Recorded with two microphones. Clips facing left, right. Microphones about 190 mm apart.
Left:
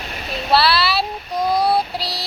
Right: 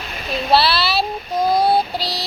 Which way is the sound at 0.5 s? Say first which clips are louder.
Even; 25° right (ahead or behind).